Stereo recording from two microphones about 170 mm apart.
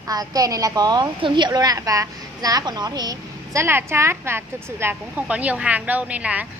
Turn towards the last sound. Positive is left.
turn(degrees=-10)  # may be behind; listen again after turning